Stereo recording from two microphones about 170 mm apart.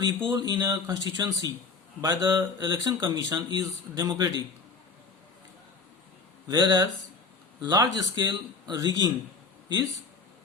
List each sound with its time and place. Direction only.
0.0 s speech: 25° right (ahead or behind)
6.5 s speech: 25° right (ahead or behind)